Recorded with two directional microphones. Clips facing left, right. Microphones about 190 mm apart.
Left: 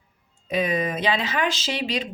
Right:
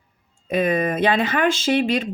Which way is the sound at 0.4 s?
55° right (ahead or behind).